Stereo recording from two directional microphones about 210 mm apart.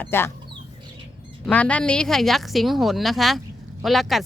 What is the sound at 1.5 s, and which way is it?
Speech, 5° left (ahead or behind).